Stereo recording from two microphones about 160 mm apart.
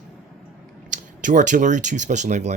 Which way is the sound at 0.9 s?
55° right (ahead or behind).